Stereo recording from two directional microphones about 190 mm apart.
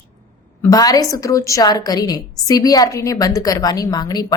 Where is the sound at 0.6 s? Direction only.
20° left (ahead or behind).